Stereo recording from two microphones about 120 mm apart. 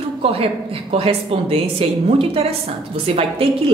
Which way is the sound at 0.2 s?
50° right (ahead or behind).